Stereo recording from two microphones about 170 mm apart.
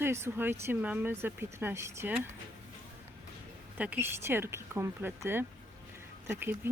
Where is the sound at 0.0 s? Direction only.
15° right (ahead or behind).